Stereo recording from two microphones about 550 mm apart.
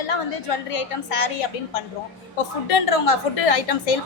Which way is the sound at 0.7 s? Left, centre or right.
Left.